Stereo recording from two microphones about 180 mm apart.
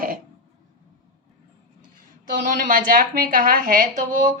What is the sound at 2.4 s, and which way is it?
Speech, 45° right (ahead or behind).